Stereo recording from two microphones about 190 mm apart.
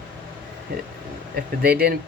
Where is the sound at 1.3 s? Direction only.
55° right (ahead or behind).